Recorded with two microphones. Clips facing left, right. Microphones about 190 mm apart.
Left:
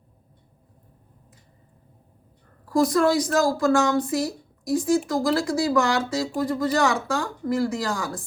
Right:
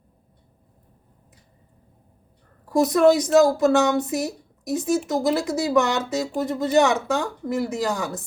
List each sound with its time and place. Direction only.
2.6 s speech: 20° right (ahead or behind)